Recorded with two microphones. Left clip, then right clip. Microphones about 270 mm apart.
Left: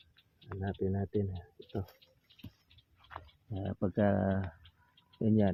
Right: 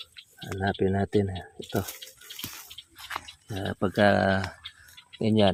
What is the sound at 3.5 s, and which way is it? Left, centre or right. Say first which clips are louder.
Speech: right 8 dB; centre.